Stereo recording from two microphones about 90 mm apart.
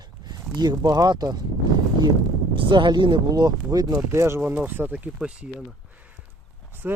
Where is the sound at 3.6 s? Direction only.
45° right (ahead or behind).